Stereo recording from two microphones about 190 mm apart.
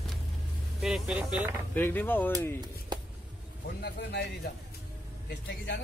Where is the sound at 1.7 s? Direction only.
10° left (ahead or behind).